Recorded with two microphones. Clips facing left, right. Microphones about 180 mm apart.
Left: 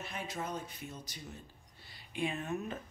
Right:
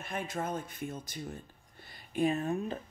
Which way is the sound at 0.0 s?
50° right (ahead or behind).